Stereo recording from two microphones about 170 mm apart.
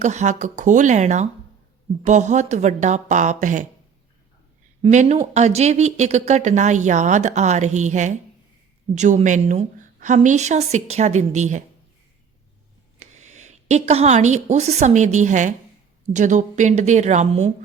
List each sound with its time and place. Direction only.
0.0 s speech: 45° right (ahead or behind)
4.8 s speech: 40° right (ahead or behind)
13.0 s a woman's voice: 45° right (ahead or behind)